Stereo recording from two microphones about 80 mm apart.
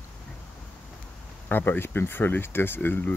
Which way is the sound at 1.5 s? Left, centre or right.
Left.